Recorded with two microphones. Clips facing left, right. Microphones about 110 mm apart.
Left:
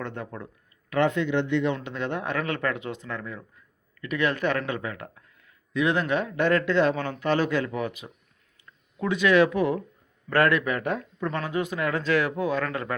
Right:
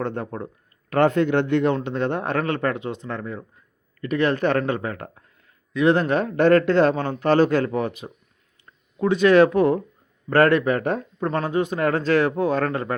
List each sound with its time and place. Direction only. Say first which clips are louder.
0.0 s speech: right 7 dB; 35° right (ahead or behind); by 1.7 s 50° right (ahead or behind)
1.7 s speech: right 6 dB; 35° right (ahead or behind)